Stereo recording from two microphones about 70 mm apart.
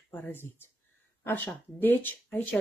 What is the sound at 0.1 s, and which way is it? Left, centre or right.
Speech, left.